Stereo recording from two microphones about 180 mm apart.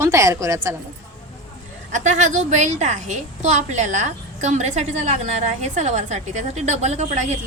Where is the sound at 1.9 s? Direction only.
45° right (ahead or behind).